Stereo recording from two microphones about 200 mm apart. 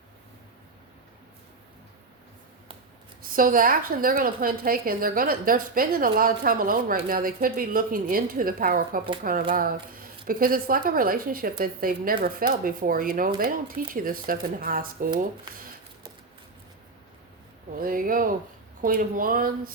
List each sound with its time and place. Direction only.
3.2 s a woman's voice: 45° right (ahead or behind)
17.7 s a woman's voice: 45° right (ahead or behind)